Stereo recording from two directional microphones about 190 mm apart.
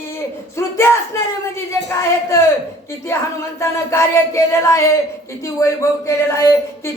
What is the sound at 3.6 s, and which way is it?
A man's voice, 15° left (ahead or behind).